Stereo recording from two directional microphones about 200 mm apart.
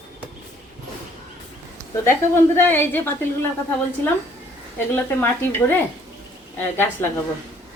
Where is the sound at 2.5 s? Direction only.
10° left (ahead or behind).